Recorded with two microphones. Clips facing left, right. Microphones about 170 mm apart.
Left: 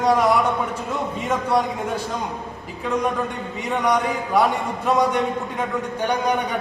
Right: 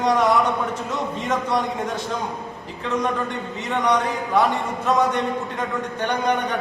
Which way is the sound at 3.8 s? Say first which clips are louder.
Even; 10° left (ahead or behind).